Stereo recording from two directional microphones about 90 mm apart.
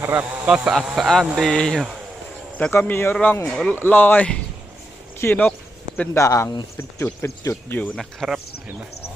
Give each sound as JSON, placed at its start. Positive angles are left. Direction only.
{"t": 0.0, "sound": "speech", "side_deg": -25}
{"t": 0.4, "sound": "speech", "side_deg": -10}
{"t": 0.8, "sound": "speech", "side_deg": 0}
{"t": 2.6, "sound": "speech", "side_deg": 25}
{"t": 3.4, "sound": "speech", "side_deg": 0}
{"t": 3.7, "sound": "speech", "side_deg": 20}
{"t": 6.1, "sound": "speech", "side_deg": 35}
{"t": 7.9, "sound": "speech", "side_deg": 0}